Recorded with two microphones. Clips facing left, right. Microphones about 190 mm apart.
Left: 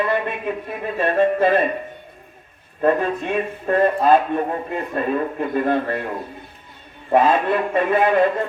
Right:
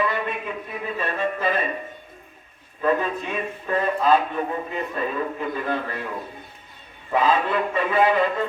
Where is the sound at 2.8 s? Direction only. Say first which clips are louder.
Left 4 dB; 50° left (ahead or behind).